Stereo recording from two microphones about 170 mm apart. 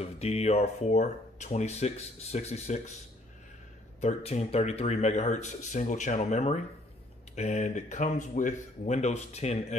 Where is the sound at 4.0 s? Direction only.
40° left (ahead or behind).